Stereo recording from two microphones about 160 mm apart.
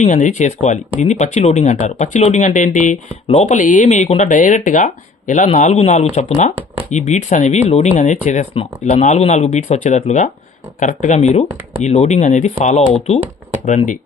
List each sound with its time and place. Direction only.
0.0 s speech: 50° left (ahead or behind)